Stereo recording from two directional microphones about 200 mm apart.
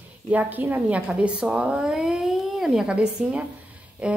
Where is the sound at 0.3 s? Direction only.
10° right (ahead or behind).